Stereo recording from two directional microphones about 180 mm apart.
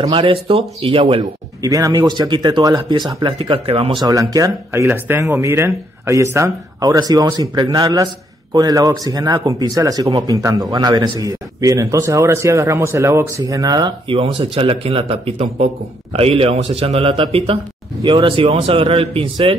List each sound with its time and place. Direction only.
0.0 s speech: 30° right (ahead or behind)
1.6 s speech: 20° right (ahead or behind)
4.0 s speech: 20° right (ahead or behind)